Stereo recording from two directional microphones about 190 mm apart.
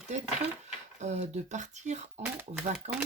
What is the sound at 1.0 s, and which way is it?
Speech, 35° right (ahead or behind).